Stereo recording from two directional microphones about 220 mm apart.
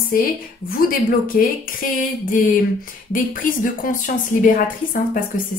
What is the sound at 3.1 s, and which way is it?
A woman's voice, 40° left (ahead or behind).